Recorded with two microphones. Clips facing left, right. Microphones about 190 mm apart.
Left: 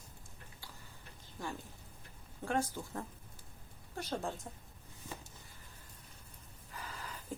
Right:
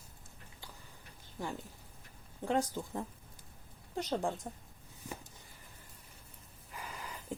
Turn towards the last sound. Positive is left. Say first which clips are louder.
# right 2 dB
turn(degrees=-15)  # may be behind; listen again after turning